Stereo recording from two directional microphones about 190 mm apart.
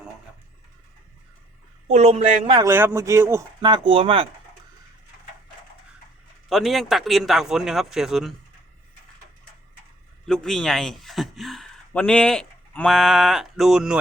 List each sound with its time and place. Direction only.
1.9 s speech: 35° right (ahead or behind)
2.6 s speech: 10° right (ahead or behind); by 4.3 s 30° right (ahead or behind)
6.5 s speech: centre (ahead or behind)
10.2 s speech: 5° left (ahead or behind)